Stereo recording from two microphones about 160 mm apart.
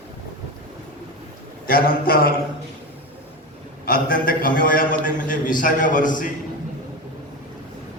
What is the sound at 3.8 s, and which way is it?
A man's voice, 65° left (ahead or behind).